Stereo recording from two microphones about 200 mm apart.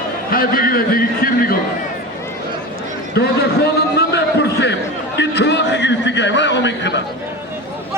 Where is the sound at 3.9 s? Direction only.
55° left (ahead or behind).